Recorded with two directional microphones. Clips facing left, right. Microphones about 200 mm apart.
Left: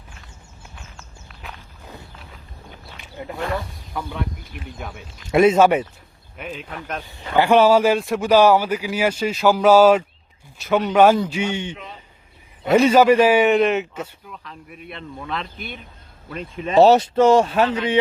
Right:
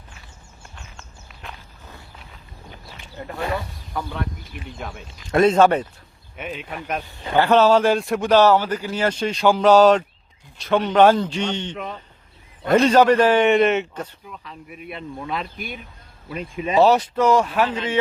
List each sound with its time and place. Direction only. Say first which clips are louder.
0.8 s walk: even; 5° left (ahead or behind)
3.2 s a man's voice: left 1 dB; 15° left (ahead or behind)
4.8 s a man's voice: right 1 dB; centre (ahead or behind)
6.3 s a man's voice: right 1 dB; 5° right (ahead or behind)
7.3 s a man's voice: left 1 dB; 10° left (ahead or behind); by 16.7 s 10° right (ahead or behind)
16.8 s speech: left 4 dB; 25° left (ahead or behind)